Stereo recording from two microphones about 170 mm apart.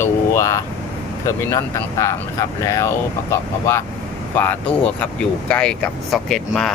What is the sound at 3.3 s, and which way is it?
Speech, 15° left (ahead or behind).